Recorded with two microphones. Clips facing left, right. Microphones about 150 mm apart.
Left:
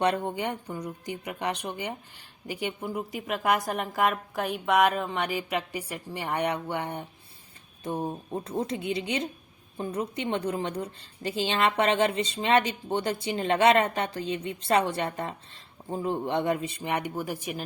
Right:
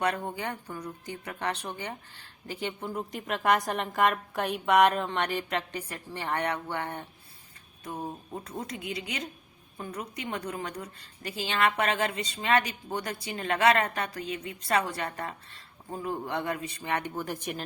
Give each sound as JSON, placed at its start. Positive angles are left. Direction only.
{"t": 0.0, "sound": "a woman's voice", "side_deg": 20}
{"t": 7.9, "sound": "a woman's voice", "side_deg": 30}